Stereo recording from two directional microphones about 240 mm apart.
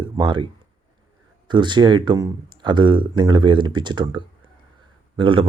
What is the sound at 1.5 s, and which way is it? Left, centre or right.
Speech, centre.